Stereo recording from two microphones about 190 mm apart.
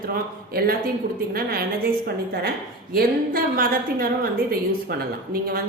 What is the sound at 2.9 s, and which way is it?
A woman's voice, 50° right (ahead or behind).